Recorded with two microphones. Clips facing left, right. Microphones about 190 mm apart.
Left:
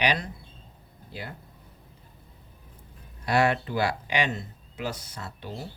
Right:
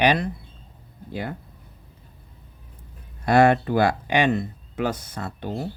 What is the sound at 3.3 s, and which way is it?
Speech, 50° right (ahead or behind).